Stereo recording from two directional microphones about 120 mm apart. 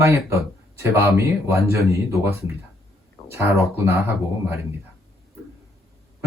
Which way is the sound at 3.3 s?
25° right (ahead or behind).